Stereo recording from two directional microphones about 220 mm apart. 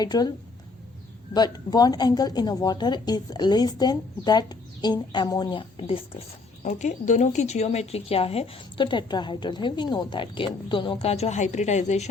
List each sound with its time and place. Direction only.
0.0 s speech: 20° left (ahead or behind)
1.3 s speech: 20° left (ahead or behind)